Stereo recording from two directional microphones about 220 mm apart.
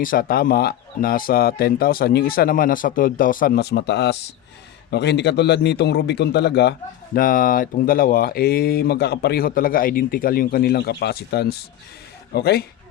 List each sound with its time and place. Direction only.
0.0 s a man's voice: 40° left (ahead or behind)